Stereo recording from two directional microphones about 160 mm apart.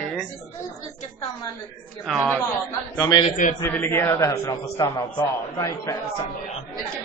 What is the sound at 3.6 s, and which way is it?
A man's voice, 10° left (ahead or behind).